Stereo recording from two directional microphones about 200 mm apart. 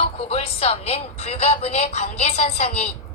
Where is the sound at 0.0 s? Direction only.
30° left (ahead or behind).